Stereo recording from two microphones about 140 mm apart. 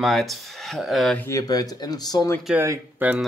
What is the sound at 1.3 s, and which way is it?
Speech, 25° left (ahead or behind).